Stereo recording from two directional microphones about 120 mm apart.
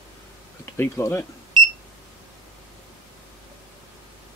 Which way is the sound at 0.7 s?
20° left (ahead or behind).